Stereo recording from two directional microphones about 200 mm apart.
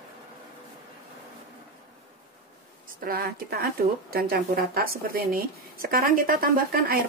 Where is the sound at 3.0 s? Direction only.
50° right (ahead or behind).